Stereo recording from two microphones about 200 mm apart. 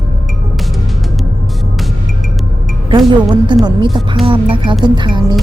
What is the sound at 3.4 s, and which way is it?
Speech, 25° right (ahead or behind).